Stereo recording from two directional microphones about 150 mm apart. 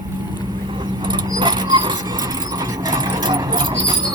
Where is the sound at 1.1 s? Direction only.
30° right (ahead or behind).